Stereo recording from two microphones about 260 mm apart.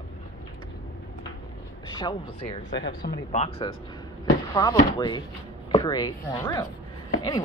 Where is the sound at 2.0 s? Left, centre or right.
Centre.